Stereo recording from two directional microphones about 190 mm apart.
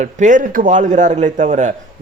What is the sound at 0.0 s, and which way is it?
Speech, 40° right (ahead or behind).